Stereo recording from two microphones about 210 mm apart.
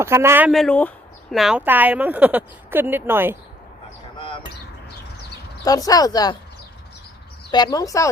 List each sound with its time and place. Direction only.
0.0 s speech: 10° right (ahead or behind)
5.6 s speech: 15° left (ahead or behind)
7.5 s speech: 20° left (ahead or behind)